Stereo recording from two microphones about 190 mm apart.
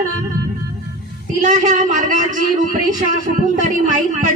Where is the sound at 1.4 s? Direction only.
40° right (ahead or behind).